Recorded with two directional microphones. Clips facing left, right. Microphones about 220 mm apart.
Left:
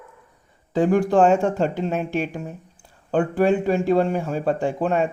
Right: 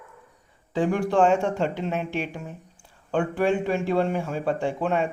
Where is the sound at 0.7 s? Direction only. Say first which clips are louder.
Left 4 dB; 40° left (ahead or behind).